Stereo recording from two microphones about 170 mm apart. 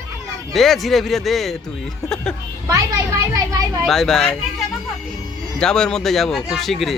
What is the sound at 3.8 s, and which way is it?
Speech, centre (ahead or behind).